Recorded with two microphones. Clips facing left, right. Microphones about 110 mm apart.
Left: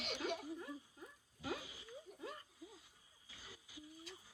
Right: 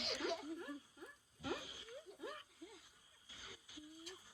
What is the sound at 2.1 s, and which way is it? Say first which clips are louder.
Chuckle: even; 45° left (ahead or behind).